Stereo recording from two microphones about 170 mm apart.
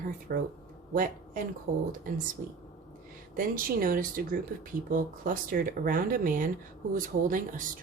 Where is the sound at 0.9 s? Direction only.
55° right (ahead or behind).